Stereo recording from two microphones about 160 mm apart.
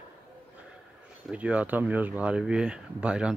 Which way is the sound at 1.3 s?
10° right (ahead or behind).